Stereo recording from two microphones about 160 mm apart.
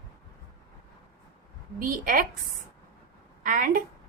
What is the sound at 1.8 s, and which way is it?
Speech, 65° right (ahead or behind).